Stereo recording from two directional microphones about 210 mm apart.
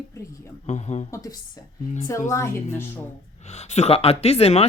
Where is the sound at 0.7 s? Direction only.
30° left (ahead or behind).